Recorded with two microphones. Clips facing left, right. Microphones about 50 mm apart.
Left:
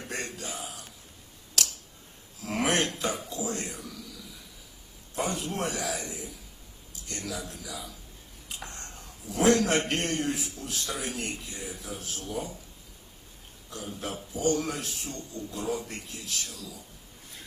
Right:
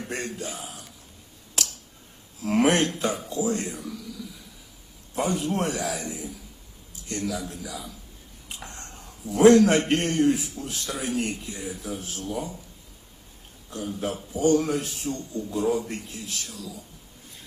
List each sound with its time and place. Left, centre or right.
0.1 s a sound: right
1.6 s finger snapping: right
2.4 s a man's voice: right
5.1 s a man's voice: right
13.7 s a man's voice: right